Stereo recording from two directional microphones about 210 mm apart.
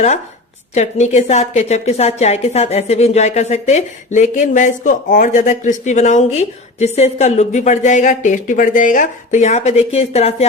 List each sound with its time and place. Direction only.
0.7 s a woman's voice: 35° left (ahead or behind)